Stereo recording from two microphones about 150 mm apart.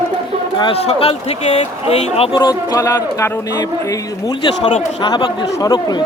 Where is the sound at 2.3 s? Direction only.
30° left (ahead or behind).